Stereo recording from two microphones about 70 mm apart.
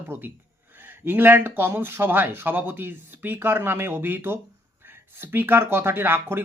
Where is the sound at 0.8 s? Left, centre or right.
Right.